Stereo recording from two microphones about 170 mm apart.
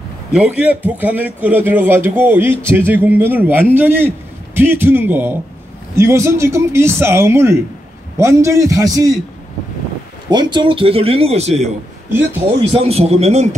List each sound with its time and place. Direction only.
0.3 s a man's voice: 5° right (ahead or behind)
10.3 s speech: 25° right (ahead or behind)
12.7 s speech: 35° right (ahead or behind)